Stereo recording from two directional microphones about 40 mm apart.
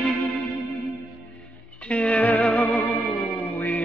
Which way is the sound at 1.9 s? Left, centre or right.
Left.